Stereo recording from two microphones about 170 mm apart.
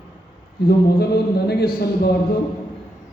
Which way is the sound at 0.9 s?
70° left (ahead or behind).